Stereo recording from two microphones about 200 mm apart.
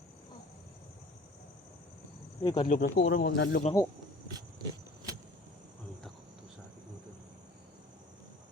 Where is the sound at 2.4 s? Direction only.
20° left (ahead or behind).